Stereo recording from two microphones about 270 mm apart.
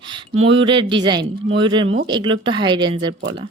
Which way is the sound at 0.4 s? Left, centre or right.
Centre.